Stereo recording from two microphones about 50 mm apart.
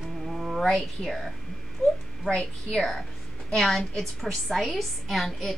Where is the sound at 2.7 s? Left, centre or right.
Centre.